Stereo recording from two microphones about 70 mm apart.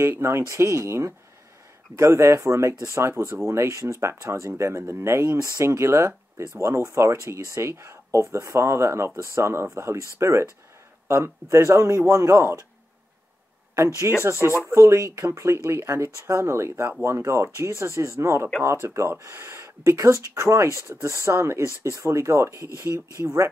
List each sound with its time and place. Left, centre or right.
0.0 s speech: right
14.1 s speech: right